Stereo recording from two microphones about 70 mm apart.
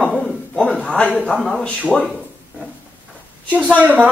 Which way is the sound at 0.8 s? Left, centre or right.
Centre.